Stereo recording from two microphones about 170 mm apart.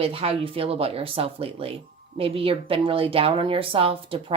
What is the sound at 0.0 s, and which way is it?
A woman's voice, 35° right (ahead or behind).